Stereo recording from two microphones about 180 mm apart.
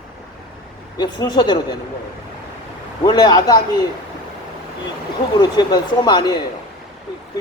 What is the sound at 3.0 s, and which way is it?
Speech, 25° left (ahead or behind).